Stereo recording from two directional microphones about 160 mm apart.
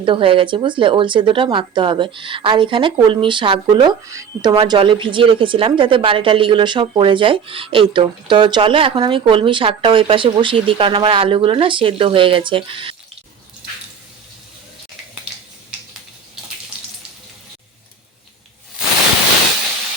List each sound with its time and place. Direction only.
0.0 s a woman's voice: 35° right (ahead or behind)
4.0 s a woman's voice: 20° right (ahead or behind)